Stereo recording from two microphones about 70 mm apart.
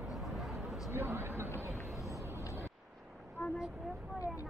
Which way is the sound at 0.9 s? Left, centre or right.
Right.